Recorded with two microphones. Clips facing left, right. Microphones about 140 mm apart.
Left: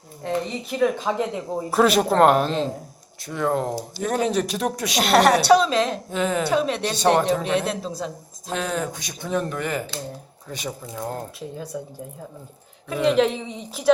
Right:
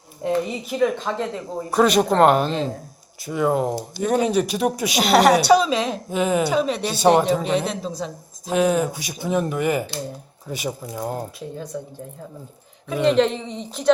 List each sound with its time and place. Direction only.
0.2 s speech: 15° right (ahead or behind)
0.7 s speech: 5° left (ahead or behind)
1.7 s a woman's voice: centre (ahead or behind)
11.5 s speech: 10° left (ahead or behind)
12.9 s a woman's voice: centre (ahead or behind)